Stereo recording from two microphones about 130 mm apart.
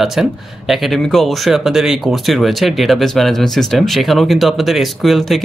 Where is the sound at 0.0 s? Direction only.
Centre (ahead or behind).